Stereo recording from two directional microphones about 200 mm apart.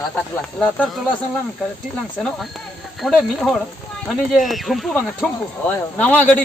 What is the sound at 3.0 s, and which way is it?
Speech, centre (ahead or behind).